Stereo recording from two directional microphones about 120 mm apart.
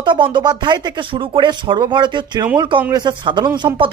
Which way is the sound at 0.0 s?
40° right (ahead or behind).